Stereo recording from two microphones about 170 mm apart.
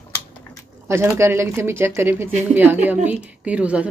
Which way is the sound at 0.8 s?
15° right (ahead or behind).